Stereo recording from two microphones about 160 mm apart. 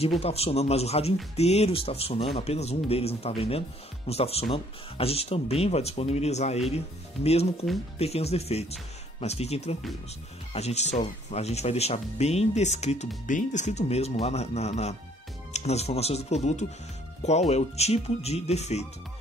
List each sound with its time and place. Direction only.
0.2 s speech: 40° left (ahead or behind)
8.0 s speech: 40° left (ahead or behind)